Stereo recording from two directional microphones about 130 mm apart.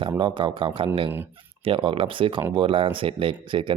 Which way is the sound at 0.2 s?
35° right (ahead or behind).